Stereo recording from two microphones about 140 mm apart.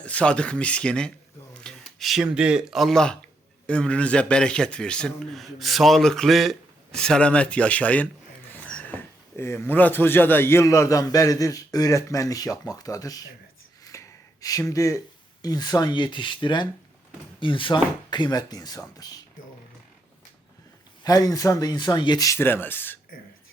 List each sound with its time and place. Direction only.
0.0 s a man's voice: 10° left (ahead or behind); by 13.2 s 25° left (ahead or behind)
13.9 s a sound: 20° left (ahead or behind)
14.4 s speech: 25° left (ahead or behind)
21.0 s speech: 25° left (ahead or behind)